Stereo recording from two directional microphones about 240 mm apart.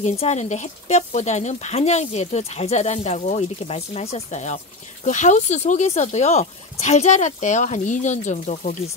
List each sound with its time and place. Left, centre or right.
0.0 s speech: left